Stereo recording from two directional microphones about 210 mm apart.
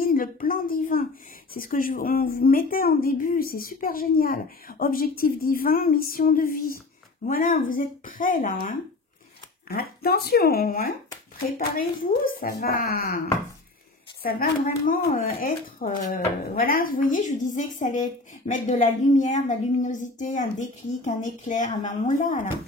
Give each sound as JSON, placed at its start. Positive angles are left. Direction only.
{"t": 0.0, "sound": "a woman's voice", "side_deg": 40}
{"t": 14.2, "sound": "a woman's voice", "side_deg": 40}